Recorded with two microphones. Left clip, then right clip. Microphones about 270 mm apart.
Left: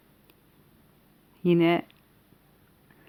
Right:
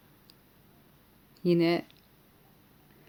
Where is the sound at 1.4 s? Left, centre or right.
Centre.